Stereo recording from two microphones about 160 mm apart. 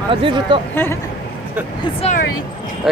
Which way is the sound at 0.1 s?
35° right (ahead or behind).